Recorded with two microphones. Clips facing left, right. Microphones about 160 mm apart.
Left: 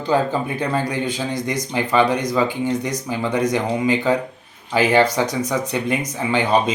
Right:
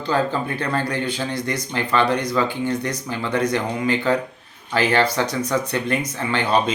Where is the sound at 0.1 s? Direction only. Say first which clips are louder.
Left 2 dB; 15° left (ahead or behind).